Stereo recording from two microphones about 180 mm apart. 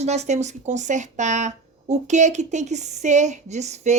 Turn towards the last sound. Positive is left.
turn(degrees=-40)  # may be behind; listen again after turning